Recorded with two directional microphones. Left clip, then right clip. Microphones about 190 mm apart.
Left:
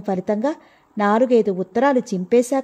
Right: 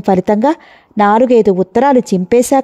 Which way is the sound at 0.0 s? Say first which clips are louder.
Right 10 dB; 50° right (ahead or behind).